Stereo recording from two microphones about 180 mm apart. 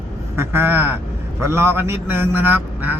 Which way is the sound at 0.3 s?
10° right (ahead or behind).